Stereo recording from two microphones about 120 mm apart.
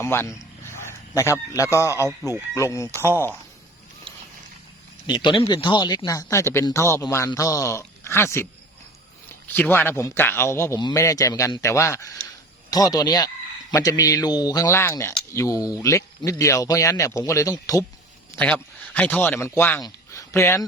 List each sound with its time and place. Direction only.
0.0 s a man's voice: 20° left (ahead or behind)
5.0 s speech: 40° left (ahead or behind)
6.1 s speech: 25° left (ahead or behind)
9.6 s speech: 15° left (ahead or behind)
18.3 s speech: 10° left (ahead or behind)
19.8 s a sound: 25° left (ahead or behind)